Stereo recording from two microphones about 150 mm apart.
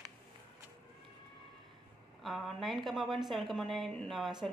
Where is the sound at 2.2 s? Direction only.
Centre (ahead or behind).